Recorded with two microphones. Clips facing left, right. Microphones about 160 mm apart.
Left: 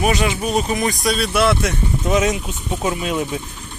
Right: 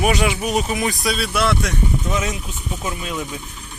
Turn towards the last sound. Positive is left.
turn(degrees=25)  # may be behind; listen again after turning